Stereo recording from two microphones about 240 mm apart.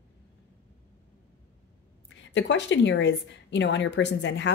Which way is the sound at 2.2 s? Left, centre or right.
Left.